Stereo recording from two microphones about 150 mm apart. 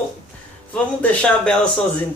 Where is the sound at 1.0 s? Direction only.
10° left (ahead or behind).